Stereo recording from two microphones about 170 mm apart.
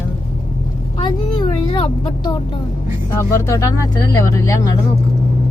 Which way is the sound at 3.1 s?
20° left (ahead or behind).